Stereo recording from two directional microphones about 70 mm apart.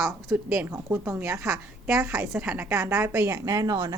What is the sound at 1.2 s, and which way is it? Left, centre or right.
A woman's voice, right.